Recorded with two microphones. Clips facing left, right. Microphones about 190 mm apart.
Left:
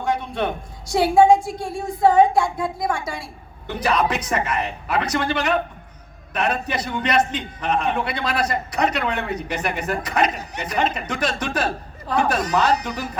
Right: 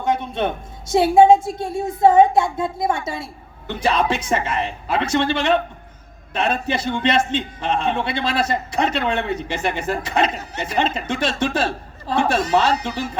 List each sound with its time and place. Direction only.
0.0 s a man's voice: 20° right (ahead or behind)